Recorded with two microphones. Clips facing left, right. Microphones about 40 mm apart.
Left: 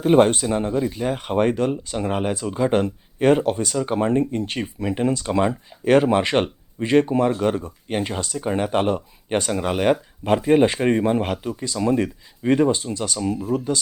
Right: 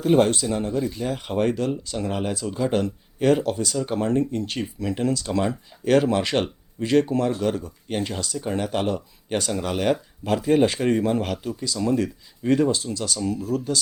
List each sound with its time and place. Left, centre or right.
0.0 s speech: left